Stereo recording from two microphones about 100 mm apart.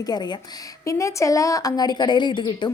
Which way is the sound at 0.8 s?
35° left (ahead or behind).